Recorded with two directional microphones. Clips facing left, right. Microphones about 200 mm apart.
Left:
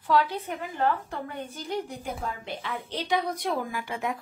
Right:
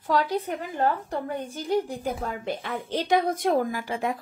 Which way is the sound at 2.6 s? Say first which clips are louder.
Right 2 dB; 45° right (ahead or behind).